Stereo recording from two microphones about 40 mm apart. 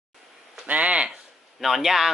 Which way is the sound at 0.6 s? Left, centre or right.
Right.